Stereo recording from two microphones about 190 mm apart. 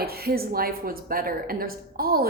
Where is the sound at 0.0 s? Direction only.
55° right (ahead or behind).